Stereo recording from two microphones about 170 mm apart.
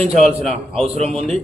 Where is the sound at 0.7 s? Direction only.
35° right (ahead or behind).